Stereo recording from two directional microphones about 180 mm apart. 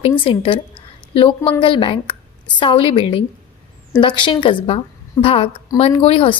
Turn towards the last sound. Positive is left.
turn(degrees=30)  # may be behind; listen again after turning